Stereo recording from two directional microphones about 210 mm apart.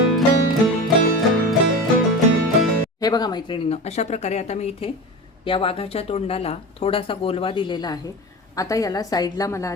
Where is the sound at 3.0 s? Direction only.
20° left (ahead or behind).